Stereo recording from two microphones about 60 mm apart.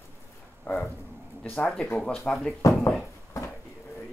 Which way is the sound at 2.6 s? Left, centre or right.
Left.